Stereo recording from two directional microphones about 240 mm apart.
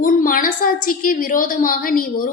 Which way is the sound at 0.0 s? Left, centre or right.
Left.